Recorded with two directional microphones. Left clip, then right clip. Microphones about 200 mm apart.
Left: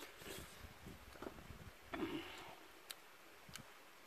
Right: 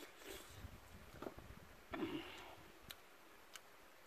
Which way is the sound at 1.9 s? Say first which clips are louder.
Left 1 dB; centre (ahead or behind).